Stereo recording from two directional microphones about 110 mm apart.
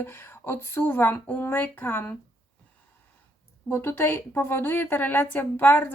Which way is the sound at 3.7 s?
20° left (ahead or behind).